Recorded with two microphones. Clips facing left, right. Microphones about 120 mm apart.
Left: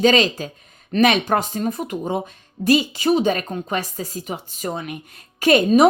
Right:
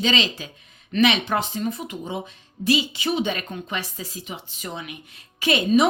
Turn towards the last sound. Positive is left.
turn(degrees=45)  # may be behind; listen again after turning